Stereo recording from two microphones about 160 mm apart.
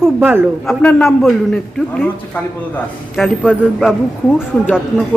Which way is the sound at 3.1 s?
Centre (ahead or behind).